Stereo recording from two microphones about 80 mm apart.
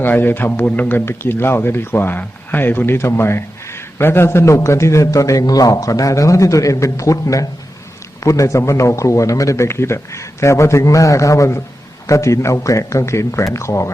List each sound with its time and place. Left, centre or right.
0.0 s a man's voice: left